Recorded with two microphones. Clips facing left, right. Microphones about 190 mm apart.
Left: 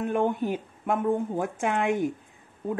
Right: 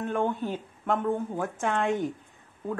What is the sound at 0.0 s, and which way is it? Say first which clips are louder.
A woman's voice: left 3 dB; 15° left (ahead or behind).